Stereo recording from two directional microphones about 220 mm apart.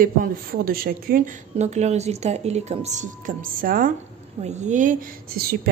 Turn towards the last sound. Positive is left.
turn(degrees=-45)  # may be behind; listen again after turning